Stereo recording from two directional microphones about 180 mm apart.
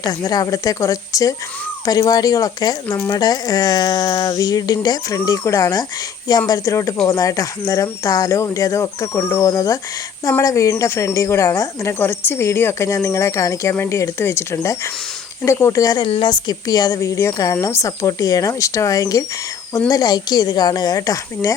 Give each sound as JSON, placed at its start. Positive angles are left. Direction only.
{"t": 0.0, "sound": "a woman's voice", "side_deg": 20}